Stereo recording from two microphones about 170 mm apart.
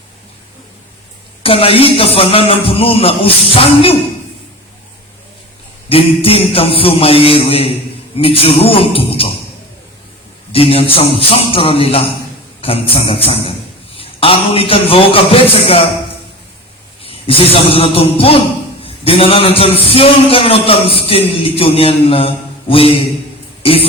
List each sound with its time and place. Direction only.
1.4 s a man's voice: 35° left (ahead or behind)
5.9 s a man's voice: 35° left (ahead or behind)
10.5 s a man's voice: 35° left (ahead or behind)
17.0 s a man's voice: 35° left (ahead or behind)